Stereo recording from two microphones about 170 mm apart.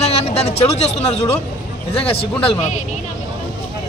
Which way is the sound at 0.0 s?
40° left (ahead or behind).